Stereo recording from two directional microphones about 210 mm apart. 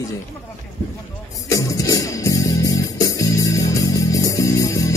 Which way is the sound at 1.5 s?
15° left (ahead or behind).